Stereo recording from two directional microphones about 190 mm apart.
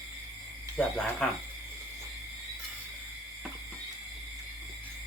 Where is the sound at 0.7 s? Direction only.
5° left (ahead or behind).